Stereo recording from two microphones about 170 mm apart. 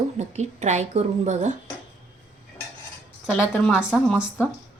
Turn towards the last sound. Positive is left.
turn(degrees=10)  # may be behind; listen again after turning